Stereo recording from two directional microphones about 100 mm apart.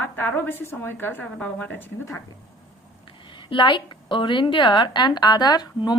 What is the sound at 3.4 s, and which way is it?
A woman's voice, 55° left (ahead or behind).